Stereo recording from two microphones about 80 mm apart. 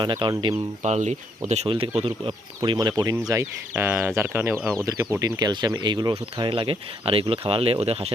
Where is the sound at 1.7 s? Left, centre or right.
Right.